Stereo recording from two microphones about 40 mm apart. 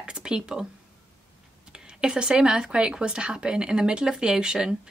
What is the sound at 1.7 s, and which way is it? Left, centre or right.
Speech, right.